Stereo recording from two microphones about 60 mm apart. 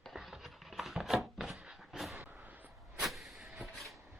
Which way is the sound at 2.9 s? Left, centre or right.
Centre.